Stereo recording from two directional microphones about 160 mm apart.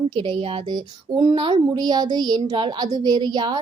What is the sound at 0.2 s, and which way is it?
Speech, 30° right (ahead or behind).